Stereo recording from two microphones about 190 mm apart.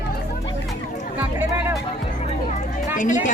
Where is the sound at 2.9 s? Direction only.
40° left (ahead or behind).